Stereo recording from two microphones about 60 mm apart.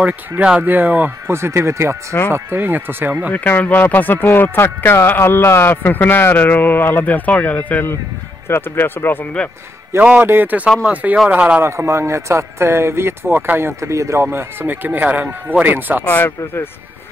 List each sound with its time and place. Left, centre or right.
0.6 s speech: right
1.3 s speech: right
2.3 s speech: right
3.3 s speech: left
8.5 s speech: left
10.2 s speech: right
11.6 s speech: right
14.2 s speech: right
15.2 s speech: centre
15.6 s speech: right
16.0 s speech: left